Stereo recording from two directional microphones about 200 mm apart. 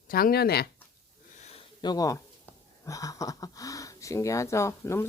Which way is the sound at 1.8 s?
20° left (ahead or behind).